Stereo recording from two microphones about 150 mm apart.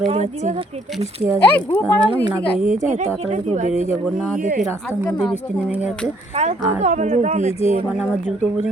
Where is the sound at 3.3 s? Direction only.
50° right (ahead or behind).